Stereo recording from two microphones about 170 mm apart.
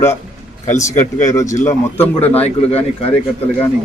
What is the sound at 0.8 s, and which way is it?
Speech, 20° left (ahead or behind).